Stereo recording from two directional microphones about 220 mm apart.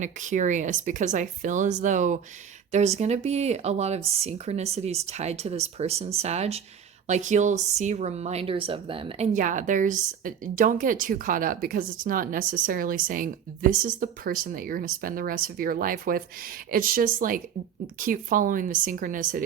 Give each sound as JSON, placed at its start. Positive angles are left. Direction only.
{"t": 0.0, "sound": "speech", "side_deg": -35}